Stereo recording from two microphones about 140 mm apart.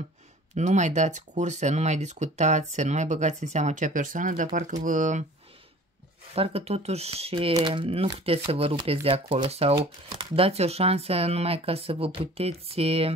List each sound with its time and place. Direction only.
0.6 s speech: 60° right (ahead or behind)
6.3 s speech: 45° right (ahead or behind)
9.8 s speech: 35° right (ahead or behind)